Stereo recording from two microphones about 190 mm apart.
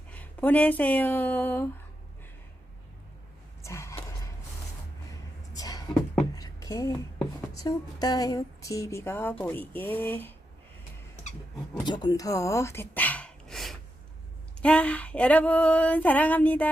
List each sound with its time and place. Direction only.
0.1 s speech: 10° left (ahead or behind)
3.6 s a sound: 15° left (ahead or behind)
5.5 s a sound: 20° left (ahead or behind)
7.5 s female singing: 20° left (ahead or behind)
11.9 s speech: 20° left (ahead or behind); by 13.7 s centre (ahead or behind)
14.6 s female singing: 5° left (ahead or behind)